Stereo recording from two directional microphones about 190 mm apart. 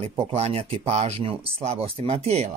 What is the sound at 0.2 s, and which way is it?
A man's voice, 30° right (ahead or behind).